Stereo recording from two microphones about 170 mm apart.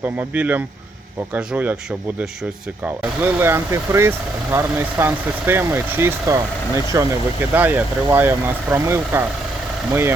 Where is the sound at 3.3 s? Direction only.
15° right (ahead or behind).